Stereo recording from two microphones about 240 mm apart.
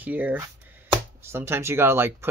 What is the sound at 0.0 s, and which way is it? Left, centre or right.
Speech, centre.